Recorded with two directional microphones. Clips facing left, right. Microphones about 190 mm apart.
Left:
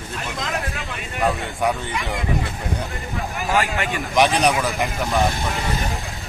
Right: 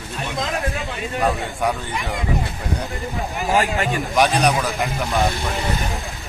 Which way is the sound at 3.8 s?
Centre (ahead or behind).